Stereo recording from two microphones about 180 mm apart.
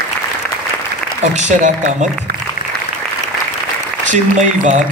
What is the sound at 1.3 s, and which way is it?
Speech, 40° right (ahead or behind).